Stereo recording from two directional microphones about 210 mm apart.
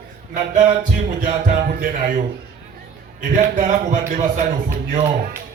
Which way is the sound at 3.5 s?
35° right (ahead or behind).